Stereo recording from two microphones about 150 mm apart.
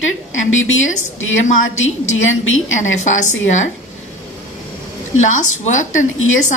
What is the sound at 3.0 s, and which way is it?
Speech, 55° left (ahead or behind).